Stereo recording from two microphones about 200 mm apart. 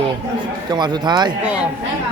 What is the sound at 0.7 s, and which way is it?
Speech, 20° right (ahead or behind).